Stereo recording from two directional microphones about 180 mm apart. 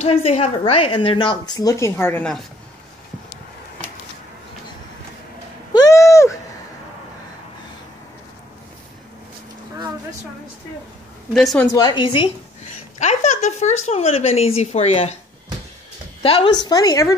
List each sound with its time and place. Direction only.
0.0 s a woman's voice: 35° left (ahead or behind); by 2.4 s 5° left (ahead or behind)
5.7 s a sound: 20° left (ahead or behind)
11.3 s a woman's voice: centre (ahead or behind)
11.6 s a woman's voice: 20° left (ahead or behind)
13.0 s speech: 40° left (ahead or behind)
16.2 s a woman's voice: 30° left (ahead or behind)